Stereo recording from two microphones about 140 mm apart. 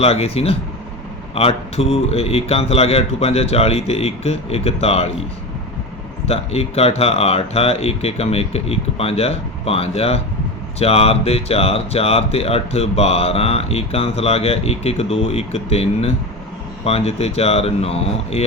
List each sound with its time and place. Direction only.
0.0 s speech: 45° left (ahead or behind)
6.2 s speech: 45° left (ahead or behind)